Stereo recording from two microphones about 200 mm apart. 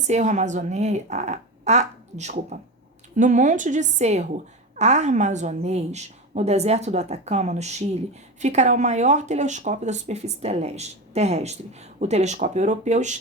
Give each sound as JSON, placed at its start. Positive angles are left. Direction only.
{"t": 0.1, "sound": "speech", "side_deg": -35}